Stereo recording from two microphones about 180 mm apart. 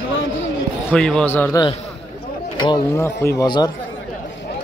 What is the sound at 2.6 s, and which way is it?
Speech, 25° left (ahead or behind).